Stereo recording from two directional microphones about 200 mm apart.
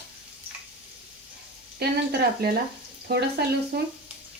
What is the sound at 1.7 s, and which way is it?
Speech, 50° right (ahead or behind).